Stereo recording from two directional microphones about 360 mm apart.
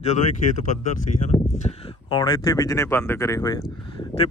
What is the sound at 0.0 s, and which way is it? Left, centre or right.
Speech, centre.